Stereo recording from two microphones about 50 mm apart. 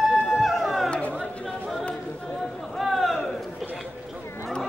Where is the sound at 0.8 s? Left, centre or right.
Left.